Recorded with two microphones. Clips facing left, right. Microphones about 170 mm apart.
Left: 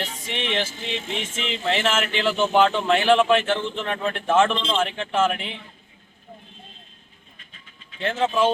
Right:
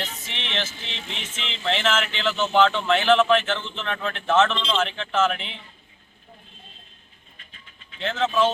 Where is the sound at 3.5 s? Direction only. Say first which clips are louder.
Left 4 dB; 45° left (ahead or behind).